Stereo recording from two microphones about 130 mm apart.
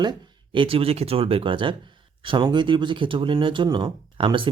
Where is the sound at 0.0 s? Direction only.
35° right (ahead or behind).